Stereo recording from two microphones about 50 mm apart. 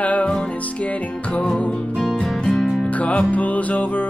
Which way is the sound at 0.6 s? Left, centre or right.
Left.